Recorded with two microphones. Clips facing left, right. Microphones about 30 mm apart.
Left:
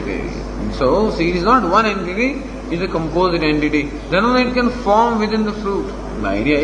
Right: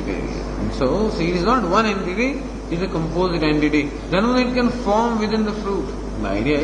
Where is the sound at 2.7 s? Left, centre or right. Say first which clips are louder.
Left 3 dB; left.